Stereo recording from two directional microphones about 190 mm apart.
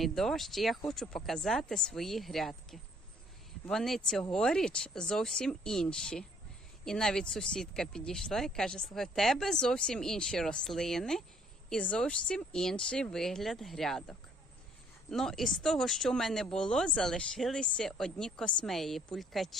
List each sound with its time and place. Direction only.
0.0 s speech: centre (ahead or behind)